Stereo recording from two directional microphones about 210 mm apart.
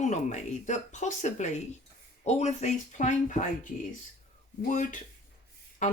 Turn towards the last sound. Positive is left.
turn(degrees=35)  # may be behind; listen again after turning